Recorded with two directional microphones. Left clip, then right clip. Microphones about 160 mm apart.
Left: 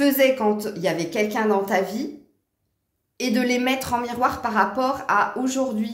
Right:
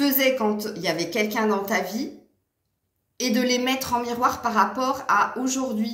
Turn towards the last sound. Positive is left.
turn(degrees=45)  # may be behind; listen again after turning